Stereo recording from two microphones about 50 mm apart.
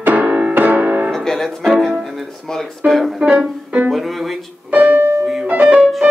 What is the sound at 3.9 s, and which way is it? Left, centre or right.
Music, centre.